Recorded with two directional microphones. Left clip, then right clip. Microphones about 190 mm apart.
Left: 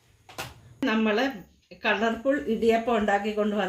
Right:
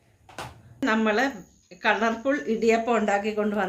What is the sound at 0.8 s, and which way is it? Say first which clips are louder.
Speech: right 2 dB; 30° left (ahead or behind).